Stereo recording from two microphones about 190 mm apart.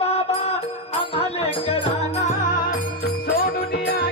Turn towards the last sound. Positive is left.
turn(degrees=55)  # may be behind; listen again after turning